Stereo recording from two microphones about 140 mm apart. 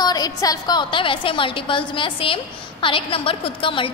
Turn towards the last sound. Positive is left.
turn(degrees=40)  # may be behind; listen again after turning